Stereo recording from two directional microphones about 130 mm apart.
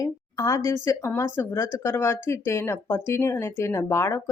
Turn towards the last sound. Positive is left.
turn(degrees=20)  # may be behind; listen again after turning